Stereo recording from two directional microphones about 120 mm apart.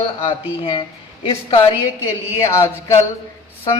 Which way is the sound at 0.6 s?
45° left (ahead or behind).